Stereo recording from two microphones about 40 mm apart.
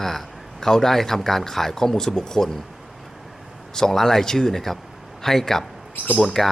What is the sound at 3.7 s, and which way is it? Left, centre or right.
A man's voice, centre.